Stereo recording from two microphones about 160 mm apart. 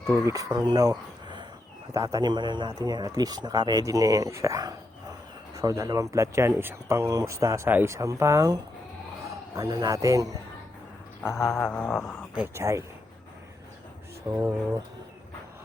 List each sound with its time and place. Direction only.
0.3 s speech: 20° right (ahead or behind)
9.6 s speech: 25° right (ahead or behind)
11.5 s a sound: 5° left (ahead or behind)
12.3 s speech: 10° right (ahead or behind)
14.3 s speech: 20° right (ahead or behind)